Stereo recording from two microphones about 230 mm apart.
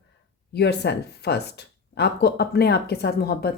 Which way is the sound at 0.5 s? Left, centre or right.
Left.